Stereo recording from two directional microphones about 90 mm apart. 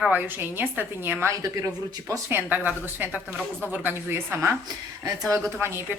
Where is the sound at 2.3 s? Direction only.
20° right (ahead or behind).